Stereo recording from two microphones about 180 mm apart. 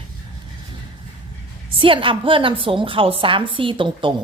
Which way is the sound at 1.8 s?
30° right (ahead or behind).